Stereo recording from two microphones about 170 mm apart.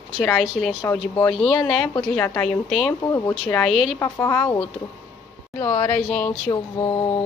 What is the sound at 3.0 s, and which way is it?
Speech, 20° left (ahead or behind).